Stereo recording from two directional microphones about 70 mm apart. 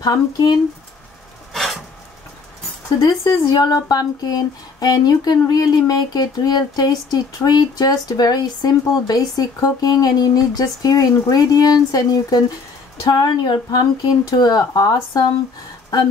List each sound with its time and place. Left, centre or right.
0.0 s speech: left
1.5 s a sound: centre
3.0 s speech: left